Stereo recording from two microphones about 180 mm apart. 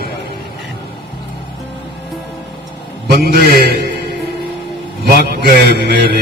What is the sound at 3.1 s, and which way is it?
Speech, 60° right (ahead or behind).